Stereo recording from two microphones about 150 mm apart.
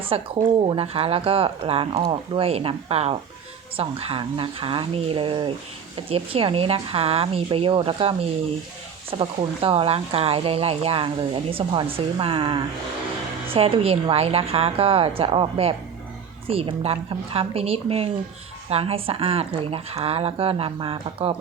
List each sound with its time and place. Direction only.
0.1 s speech: 35° right (ahead or behind)